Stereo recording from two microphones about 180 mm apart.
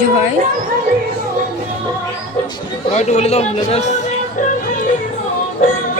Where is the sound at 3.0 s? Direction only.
40° left (ahead or behind).